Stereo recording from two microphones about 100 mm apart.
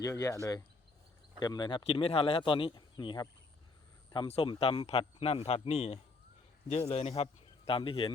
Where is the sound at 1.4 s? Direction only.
45° left (ahead or behind).